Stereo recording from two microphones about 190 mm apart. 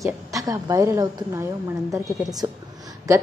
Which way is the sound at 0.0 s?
15° right (ahead or behind).